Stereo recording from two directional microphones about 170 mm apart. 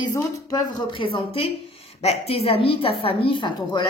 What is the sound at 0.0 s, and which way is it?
A woman's voice, 25° left (ahead or behind).